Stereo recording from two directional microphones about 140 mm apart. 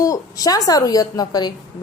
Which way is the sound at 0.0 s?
25° left (ahead or behind).